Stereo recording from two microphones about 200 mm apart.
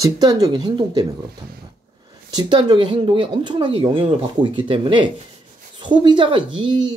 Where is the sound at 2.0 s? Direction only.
20° right (ahead or behind).